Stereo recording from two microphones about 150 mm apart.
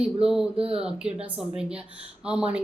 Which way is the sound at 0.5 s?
40° right (ahead or behind).